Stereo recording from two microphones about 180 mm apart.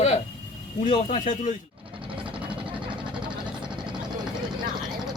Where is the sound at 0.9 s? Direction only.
35° left (ahead or behind).